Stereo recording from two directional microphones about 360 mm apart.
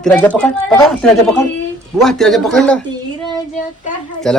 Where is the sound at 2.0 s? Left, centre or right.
Centre.